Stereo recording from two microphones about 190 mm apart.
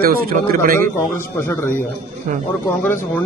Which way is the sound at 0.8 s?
15° left (ahead or behind).